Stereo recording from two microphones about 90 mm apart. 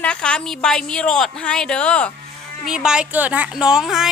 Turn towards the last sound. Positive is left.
turn(degrees=-5)  # may be behind; listen again after turning